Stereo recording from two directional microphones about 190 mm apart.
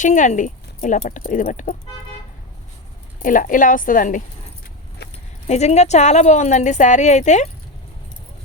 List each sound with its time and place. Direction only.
0.0 s a woman's voice: 40° left (ahead or behind)
3.2 s a woman's voice: 45° left (ahead or behind)
5.5 s a woman's voice: 35° left (ahead or behind)